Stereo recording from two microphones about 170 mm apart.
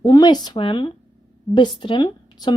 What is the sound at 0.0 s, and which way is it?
Speech, 20° left (ahead or behind).